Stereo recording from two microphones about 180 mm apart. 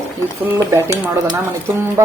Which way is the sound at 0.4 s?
10° right (ahead or behind).